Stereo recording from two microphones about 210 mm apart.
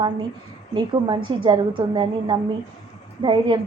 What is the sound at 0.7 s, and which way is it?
A woman's voice, 20° right (ahead or behind).